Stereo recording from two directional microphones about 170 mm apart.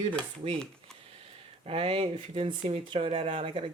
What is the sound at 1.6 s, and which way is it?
Speech, 35° right (ahead or behind).